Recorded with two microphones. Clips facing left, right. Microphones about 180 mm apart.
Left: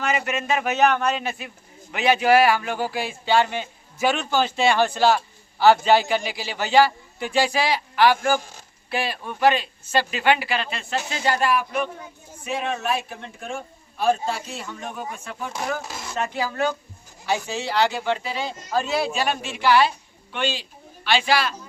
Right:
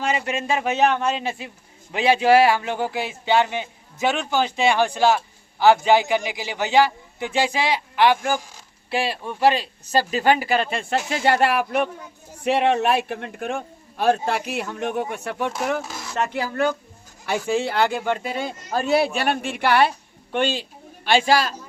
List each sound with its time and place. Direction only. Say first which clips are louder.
0.3 s a man's voice: right 1 dB; 30° right (ahead or behind); by 15.5 s 75° right (ahead or behind)
15.7 s speech: right 3 dB; 60° right (ahead or behind); by 21.5 s 45° right (ahead or behind)